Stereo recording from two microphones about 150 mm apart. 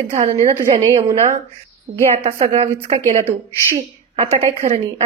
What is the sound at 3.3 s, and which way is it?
Speech, 15° right (ahead or behind).